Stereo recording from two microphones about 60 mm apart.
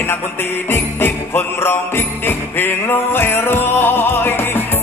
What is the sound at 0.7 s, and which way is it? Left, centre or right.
Music, left.